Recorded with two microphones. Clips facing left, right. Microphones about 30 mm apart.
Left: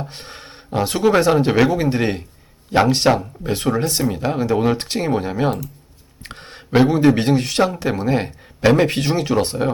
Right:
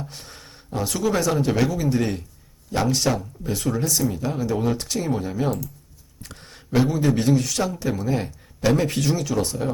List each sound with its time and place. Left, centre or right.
0.0 s speech: left